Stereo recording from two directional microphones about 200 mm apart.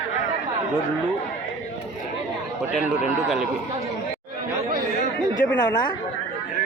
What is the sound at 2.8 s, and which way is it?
Speech, 15° right (ahead or behind).